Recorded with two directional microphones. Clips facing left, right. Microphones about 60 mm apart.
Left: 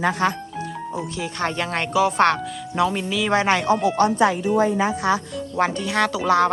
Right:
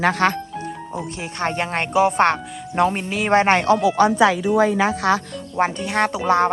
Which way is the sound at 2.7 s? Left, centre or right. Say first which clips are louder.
Right 2 dB; right.